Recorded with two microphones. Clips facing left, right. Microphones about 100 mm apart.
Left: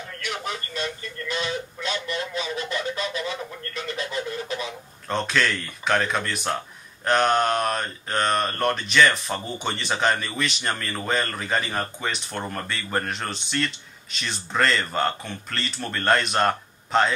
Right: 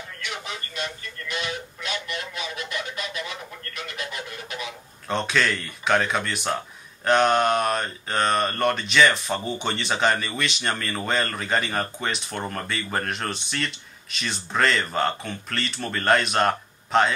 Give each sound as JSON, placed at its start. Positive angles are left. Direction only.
{"t": 0.7, "sound": "a sound", "side_deg": 30}
{"t": 3.7, "sound": "radio", "side_deg": 30}
{"t": 5.0, "sound": "mantra", "side_deg": 0}